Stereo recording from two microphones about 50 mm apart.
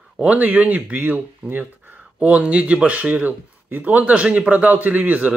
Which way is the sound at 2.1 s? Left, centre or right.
Right.